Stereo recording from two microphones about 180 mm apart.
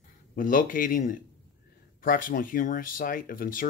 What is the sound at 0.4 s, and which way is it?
Speech, 50° left (ahead or behind).